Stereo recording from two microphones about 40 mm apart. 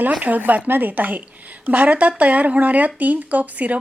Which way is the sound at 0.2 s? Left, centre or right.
Right.